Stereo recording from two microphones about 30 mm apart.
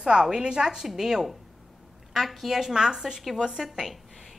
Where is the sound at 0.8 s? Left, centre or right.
Centre.